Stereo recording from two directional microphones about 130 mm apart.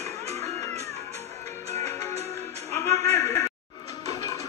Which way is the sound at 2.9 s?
55° right (ahead or behind).